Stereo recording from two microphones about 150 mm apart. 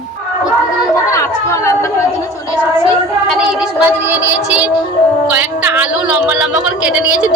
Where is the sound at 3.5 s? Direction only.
10° right (ahead or behind).